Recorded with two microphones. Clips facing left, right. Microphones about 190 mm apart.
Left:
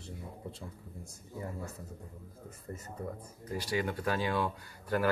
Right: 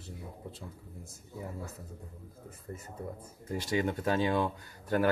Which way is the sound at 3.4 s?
25° right (ahead or behind).